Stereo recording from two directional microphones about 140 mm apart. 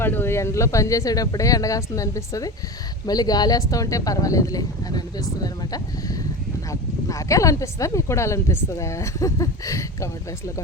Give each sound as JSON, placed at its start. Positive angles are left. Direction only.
{"t": 0.0, "sound": "speech", "side_deg": 15}